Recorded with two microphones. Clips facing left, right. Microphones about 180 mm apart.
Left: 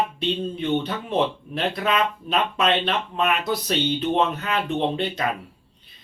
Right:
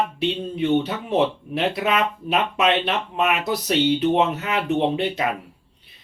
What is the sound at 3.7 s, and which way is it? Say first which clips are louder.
Speech: right 6 dB; 20° right (ahead or behind).